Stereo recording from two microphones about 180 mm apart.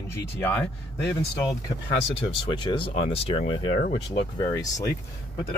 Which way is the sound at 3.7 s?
55° left (ahead or behind).